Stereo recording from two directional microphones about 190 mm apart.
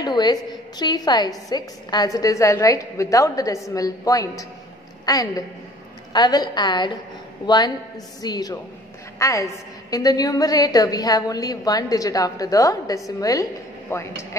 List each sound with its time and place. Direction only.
0.0 s a woman's voice: 20° left (ahead or behind)